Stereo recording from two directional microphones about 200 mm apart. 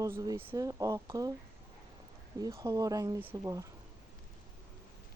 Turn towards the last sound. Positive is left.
turn(degrees=-15)  # may be behind; listen again after turning